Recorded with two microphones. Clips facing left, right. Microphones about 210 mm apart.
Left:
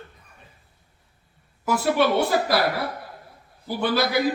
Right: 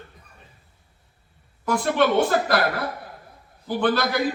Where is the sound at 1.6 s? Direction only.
5° left (ahead or behind).